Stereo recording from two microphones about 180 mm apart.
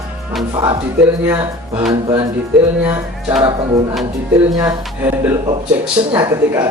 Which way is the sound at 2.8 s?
10° right (ahead or behind).